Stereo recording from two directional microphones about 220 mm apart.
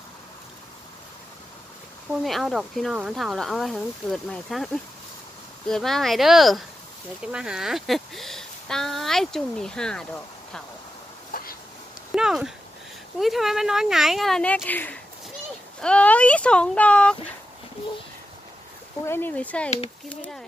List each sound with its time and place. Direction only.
2.2 s speech: centre (ahead or behind)
5.7 s speech: centre (ahead or behind)
11.3 s a sound: 40° left (ahead or behind)
12.1 s a sound: 5° right (ahead or behind)
13.2 s speech: centre (ahead or behind)
19.0 s speech: 10° left (ahead or behind)